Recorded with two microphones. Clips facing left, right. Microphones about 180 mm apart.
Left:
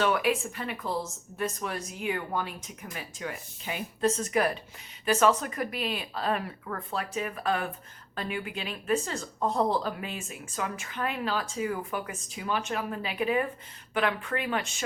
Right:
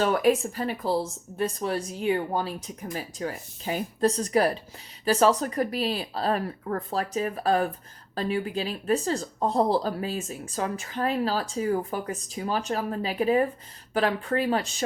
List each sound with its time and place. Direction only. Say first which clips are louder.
0.0 s speech: right 4 dB; 40° right (ahead or behind)